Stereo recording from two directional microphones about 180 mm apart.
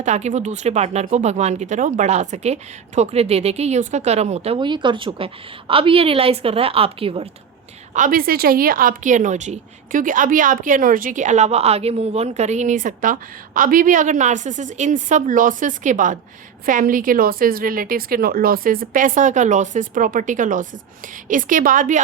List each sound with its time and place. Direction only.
0.0 s speech: 40° right (ahead or behind)
7.9 s a woman's voice: 50° right (ahead or behind)